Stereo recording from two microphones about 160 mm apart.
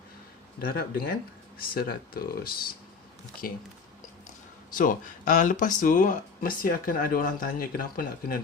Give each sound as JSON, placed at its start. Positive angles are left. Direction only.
{"t": 0.6, "sound": "speech", "side_deg": 70}
{"t": 4.8, "sound": "speech", "side_deg": 55}